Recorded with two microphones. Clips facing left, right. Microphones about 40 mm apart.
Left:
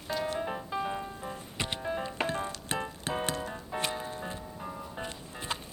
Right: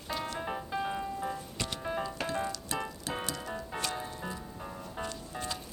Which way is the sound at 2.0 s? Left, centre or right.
Left.